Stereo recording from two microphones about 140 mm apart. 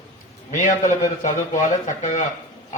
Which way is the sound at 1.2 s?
60° left (ahead or behind).